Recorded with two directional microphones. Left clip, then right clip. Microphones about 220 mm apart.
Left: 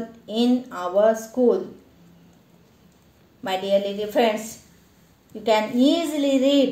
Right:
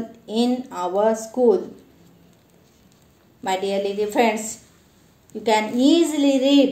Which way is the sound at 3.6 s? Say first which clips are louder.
Left 4 dB; 20° right (ahead or behind).